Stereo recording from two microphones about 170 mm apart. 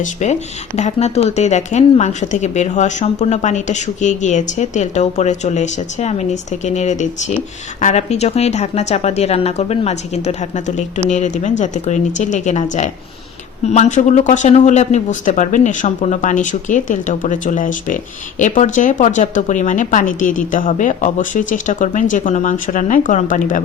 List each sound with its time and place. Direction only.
0.0 s speech: 45° left (ahead or behind)